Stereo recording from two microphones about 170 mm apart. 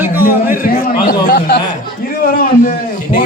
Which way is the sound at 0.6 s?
60° left (ahead or behind).